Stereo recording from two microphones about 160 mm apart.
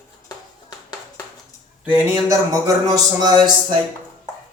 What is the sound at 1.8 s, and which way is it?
Speech, 10° right (ahead or behind).